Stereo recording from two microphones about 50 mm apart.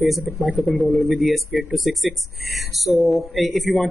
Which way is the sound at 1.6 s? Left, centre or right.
Centre.